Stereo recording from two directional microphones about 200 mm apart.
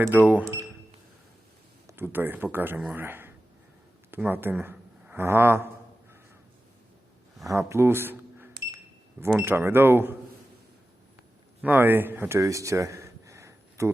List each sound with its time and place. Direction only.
0.1 s speech: 10° right (ahead or behind)
1.9 s speech: 10° right (ahead or behind)
7.4 s a man's voice: 15° right (ahead or behind)
11.6 s speech: 10° right (ahead or behind)